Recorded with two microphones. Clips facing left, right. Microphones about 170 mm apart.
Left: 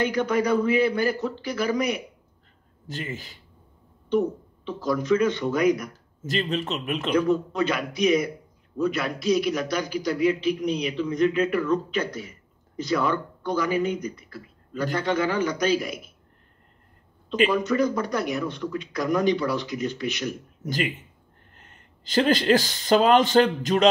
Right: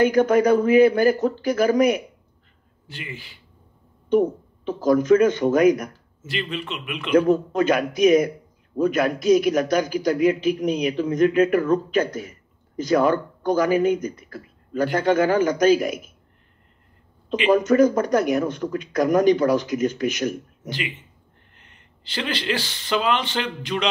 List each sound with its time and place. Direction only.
0.0 s a man's voice: 50° right (ahead or behind)
2.9 s a man's voice: 40° left (ahead or behind)
4.1 s a man's voice: 50° right (ahead or behind)
6.2 s a man's voice: 40° left (ahead or behind)
7.1 s a man's voice: 50° right (ahead or behind)
17.5 s a man's voice: 45° right (ahead or behind)
21.5 s speech: 40° left (ahead or behind)